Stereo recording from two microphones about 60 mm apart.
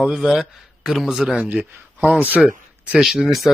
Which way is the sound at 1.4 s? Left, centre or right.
Right.